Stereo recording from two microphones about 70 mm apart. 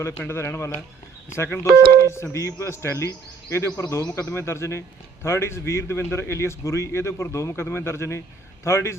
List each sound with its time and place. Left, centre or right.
0.3 s a man's voice: left
1.7 s a man's voice: left